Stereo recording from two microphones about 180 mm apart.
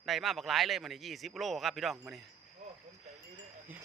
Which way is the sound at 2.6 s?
40° right (ahead or behind).